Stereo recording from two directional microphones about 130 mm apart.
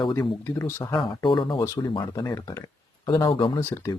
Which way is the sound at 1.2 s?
40° left (ahead or behind).